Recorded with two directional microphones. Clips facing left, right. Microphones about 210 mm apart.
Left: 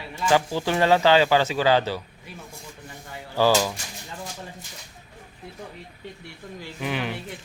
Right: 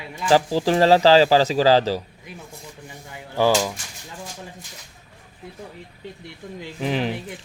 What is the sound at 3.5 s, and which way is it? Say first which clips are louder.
Speech: right 1 dB; centre (ahead or behind).